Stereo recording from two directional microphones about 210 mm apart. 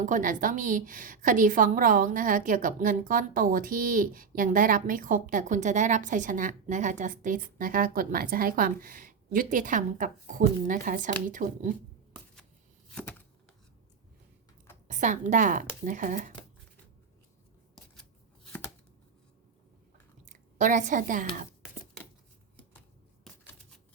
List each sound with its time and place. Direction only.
0.0 s a woman's voice: 40° right (ahead or behind)
12.9 s a sound: 5° left (ahead or behind)
14.8 s a woman's voice: 35° right (ahead or behind)
20.2 s a woman's voice: 35° right (ahead or behind)
23.3 s typewriter: centre (ahead or behind)